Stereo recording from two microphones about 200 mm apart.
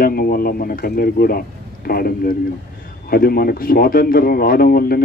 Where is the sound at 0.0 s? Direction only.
50° left (ahead or behind).